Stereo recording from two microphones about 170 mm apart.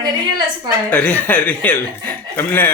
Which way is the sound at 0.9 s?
10° left (ahead or behind).